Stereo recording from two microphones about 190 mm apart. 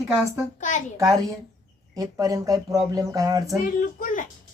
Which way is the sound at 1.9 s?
20° right (ahead or behind).